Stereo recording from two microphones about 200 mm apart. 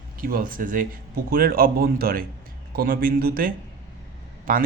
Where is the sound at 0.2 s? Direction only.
45° right (ahead or behind).